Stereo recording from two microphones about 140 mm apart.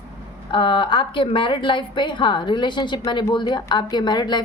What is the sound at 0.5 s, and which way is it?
A woman's voice, 35° left (ahead or behind).